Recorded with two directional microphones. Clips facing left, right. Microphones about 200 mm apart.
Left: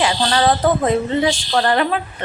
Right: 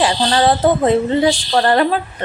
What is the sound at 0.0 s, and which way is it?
A woman's voice, 30° right (ahead or behind).